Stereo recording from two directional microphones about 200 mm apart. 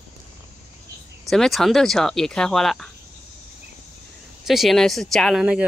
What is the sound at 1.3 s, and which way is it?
Speech, centre (ahead or behind).